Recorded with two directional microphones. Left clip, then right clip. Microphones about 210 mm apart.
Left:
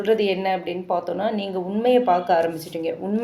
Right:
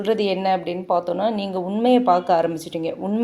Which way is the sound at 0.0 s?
35° right (ahead or behind).